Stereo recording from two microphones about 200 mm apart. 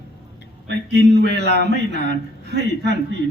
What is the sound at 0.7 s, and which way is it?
Speech, 55° right (ahead or behind).